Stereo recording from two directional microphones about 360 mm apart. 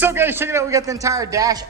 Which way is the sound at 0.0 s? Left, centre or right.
Centre.